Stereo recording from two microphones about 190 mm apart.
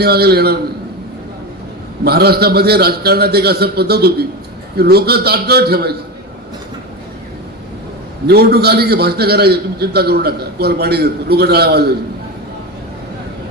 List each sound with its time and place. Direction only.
0.0 s a man's voice: 55° right (ahead or behind)
2.0 s a man's voice: 55° right (ahead or behind)
8.3 s a man's voice: 55° right (ahead or behind)